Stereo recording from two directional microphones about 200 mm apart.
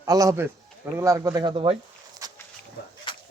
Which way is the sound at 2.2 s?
15° right (ahead or behind).